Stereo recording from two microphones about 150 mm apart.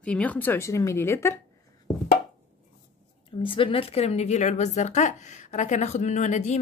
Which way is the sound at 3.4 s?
35° left (ahead or behind).